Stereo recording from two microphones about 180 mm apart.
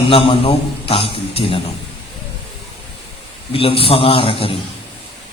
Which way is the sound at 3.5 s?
30° left (ahead or behind).